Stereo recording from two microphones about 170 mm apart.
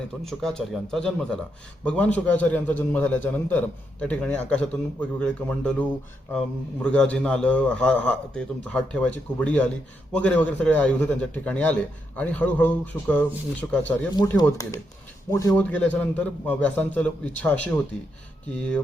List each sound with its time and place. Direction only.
0.3 s a man's voice: 5° left (ahead or behind)